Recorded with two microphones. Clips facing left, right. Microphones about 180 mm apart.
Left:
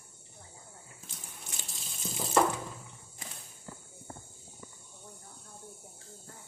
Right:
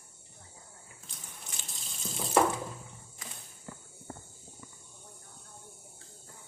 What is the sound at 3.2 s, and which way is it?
Cricket, 25° left (ahead or behind).